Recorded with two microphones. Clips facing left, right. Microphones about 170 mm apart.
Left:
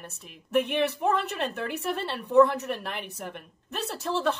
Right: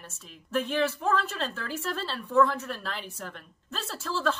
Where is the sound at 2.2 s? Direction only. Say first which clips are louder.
Left 4 dB; 20° left (ahead or behind).